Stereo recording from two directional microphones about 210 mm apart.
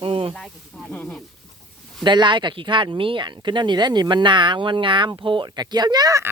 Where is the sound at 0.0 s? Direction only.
25° right (ahead or behind).